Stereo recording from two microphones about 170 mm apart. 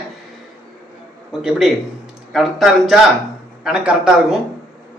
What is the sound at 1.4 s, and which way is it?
A man's voice, centre (ahead or behind).